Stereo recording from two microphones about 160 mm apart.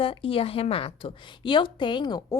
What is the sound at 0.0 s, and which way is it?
A woman's voice, 35° left (ahead or behind).